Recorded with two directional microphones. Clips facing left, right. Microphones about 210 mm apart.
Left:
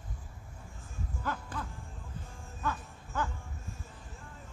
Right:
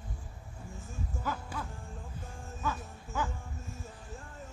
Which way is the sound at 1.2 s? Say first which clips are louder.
Even; 5° right (ahead or behind).